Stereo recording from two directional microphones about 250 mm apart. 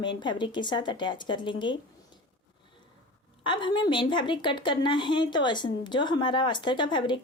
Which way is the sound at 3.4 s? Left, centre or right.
Centre.